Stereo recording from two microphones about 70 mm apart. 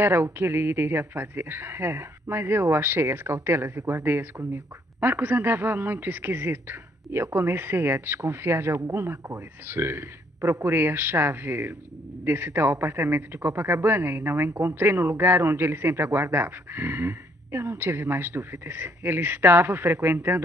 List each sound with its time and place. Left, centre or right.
0.0 s speech: right